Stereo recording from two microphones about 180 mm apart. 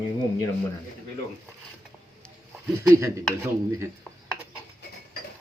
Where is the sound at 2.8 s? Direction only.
15° right (ahead or behind).